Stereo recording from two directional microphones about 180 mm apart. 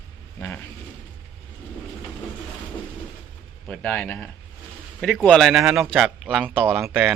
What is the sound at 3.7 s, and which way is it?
Speech, 5° left (ahead or behind).